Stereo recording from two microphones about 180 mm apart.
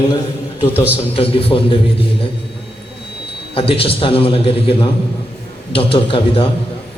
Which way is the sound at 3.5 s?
30° left (ahead or behind).